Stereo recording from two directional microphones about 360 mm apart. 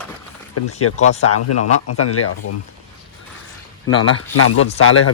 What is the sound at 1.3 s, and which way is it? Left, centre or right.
Speech, left.